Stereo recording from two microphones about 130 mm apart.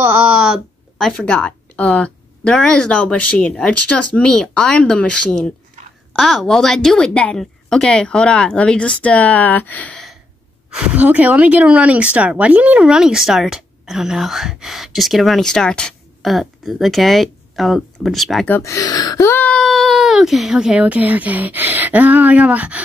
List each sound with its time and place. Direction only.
0.0 s a sound: 10° right (ahead or behind)
0.9 s a woman's voice: 5° left (ahead or behind)
10.7 s speech: 10° right (ahead or behind)
18.5 s speech: 25° left (ahead or behind); by 22.8 s 10° right (ahead or behind)